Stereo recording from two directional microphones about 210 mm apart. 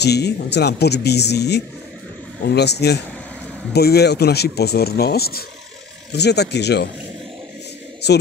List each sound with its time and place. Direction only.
0.0 s speech: 50° left (ahead or behind)